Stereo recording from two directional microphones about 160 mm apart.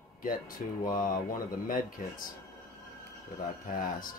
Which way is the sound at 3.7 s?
60° left (ahead or behind).